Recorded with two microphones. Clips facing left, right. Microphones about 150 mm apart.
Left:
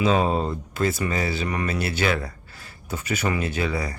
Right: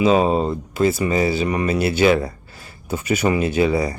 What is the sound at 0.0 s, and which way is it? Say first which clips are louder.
Speech: right 5 dB; 10° right (ahead or behind).